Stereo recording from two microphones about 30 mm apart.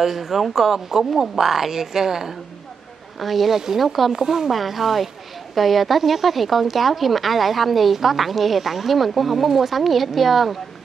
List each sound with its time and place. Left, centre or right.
0.0 s speech: centre
3.2 s speech: centre
4.1 s speech: centre
4.5 s speech: centre